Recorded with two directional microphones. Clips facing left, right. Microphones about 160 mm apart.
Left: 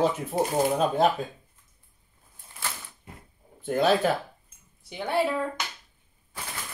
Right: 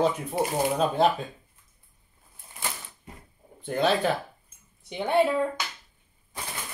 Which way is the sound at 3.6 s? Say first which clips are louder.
Left 2 dB; 5° left (ahead or behind).